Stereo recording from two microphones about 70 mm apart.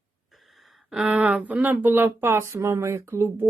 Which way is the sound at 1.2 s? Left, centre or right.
Right.